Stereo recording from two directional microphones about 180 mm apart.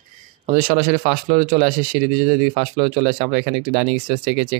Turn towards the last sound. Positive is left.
turn(degrees=-50)  # may be behind; listen again after turning